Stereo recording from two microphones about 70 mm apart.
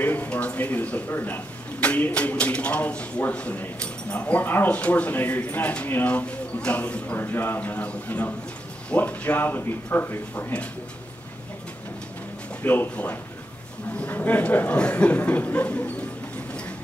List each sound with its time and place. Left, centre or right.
0.0 s speech: left
7.2 s speech: left
12.6 s speech: left